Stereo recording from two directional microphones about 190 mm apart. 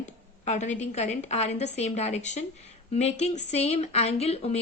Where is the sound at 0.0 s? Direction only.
40° left (ahead or behind).